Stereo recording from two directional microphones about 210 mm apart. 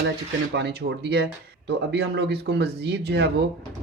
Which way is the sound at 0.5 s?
50° right (ahead or behind).